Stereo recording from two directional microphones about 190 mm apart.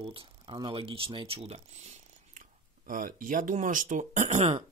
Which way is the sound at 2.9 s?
45° right (ahead or behind).